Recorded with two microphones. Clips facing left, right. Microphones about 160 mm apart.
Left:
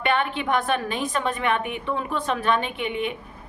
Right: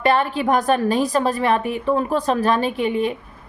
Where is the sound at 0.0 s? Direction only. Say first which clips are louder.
Right 6 dB; 35° right (ahead or behind).